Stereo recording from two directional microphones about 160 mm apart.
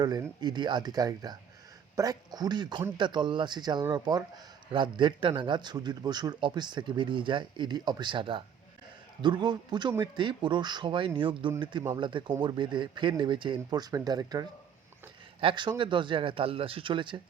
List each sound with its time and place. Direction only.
0.0 s a man's voice: 25° right (ahead or behind)